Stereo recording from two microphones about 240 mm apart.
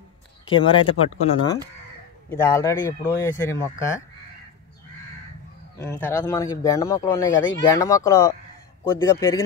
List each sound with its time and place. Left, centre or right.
0.5 s speech: left
2.2 s speech: centre
5.8 s speech: centre